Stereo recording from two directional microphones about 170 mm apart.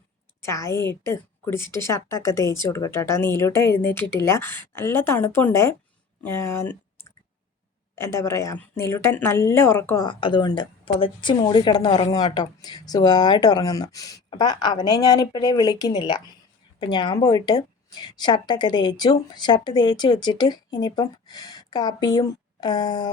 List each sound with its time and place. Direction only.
0.4 s a woman's voice: 15° left (ahead or behind)
10.1 s speech: 30° left (ahead or behind)